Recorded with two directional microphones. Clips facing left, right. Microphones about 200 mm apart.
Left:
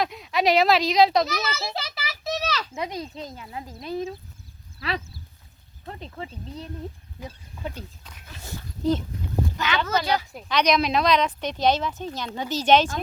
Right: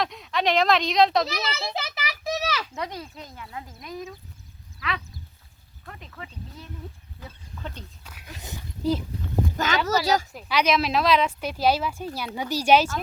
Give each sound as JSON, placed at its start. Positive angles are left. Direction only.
{"t": 0.0, "sound": "speech", "side_deg": 5}
{"t": 1.3, "sound": "children playing", "side_deg": -15}
{"t": 2.7, "sound": "speech", "side_deg": 15}
{"t": 7.6, "sound": "speech", "side_deg": 10}
{"t": 8.0, "sound": "speech", "side_deg": -5}
{"t": 8.4, "sound": "speech", "side_deg": -15}
{"t": 9.6, "sound": "speech", "side_deg": -45}
{"t": 10.3, "sound": "speech", "side_deg": -5}